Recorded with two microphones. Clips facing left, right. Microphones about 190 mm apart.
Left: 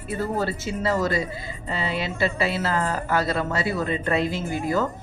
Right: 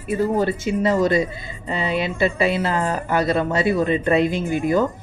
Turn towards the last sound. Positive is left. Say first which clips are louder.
# right 5 dB
turn(degrees=-20)  # may be behind; listen again after turning